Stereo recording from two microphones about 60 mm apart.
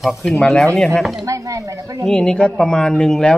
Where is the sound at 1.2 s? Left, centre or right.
Right.